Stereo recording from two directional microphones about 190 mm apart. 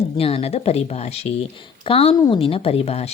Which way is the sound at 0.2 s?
30° left (ahead or behind).